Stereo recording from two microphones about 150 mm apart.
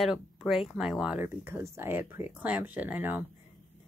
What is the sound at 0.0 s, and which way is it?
Speech, centre (ahead or behind).